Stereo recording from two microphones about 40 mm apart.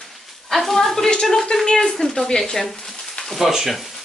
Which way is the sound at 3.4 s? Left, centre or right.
Centre.